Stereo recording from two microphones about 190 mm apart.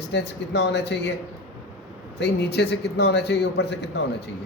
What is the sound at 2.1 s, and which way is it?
A man's voice, 60° left (ahead or behind).